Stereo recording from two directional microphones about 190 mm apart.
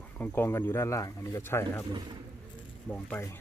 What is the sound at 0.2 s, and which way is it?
Speech, 10° left (ahead or behind).